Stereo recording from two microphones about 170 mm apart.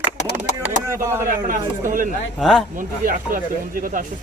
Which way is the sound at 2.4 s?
Centre (ahead or behind).